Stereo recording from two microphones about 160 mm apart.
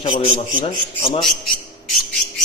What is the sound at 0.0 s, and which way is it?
Speech, 40° left (ahead or behind).